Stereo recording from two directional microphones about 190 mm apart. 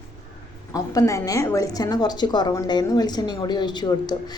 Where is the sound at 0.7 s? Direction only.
15° left (ahead or behind).